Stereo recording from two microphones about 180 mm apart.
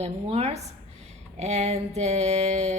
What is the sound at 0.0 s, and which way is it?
A woman's voice, 35° right (ahead or behind).